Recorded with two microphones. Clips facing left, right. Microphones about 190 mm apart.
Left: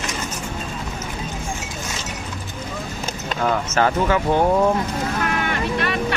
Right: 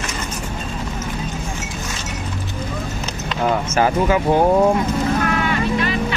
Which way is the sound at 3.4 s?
15° right (ahead or behind).